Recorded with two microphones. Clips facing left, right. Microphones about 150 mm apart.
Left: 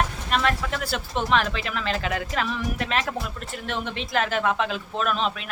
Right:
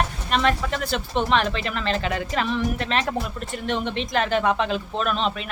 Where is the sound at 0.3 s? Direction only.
Centre (ahead or behind).